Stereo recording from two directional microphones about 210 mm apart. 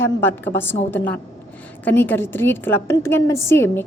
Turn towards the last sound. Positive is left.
turn(degrees=10)  # may be behind; listen again after turning